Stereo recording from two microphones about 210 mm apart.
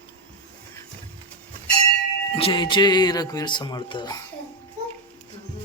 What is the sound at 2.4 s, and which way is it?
Speech, 20° left (ahead or behind).